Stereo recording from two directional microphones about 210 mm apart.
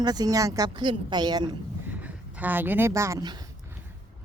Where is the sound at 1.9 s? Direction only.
5° right (ahead or behind).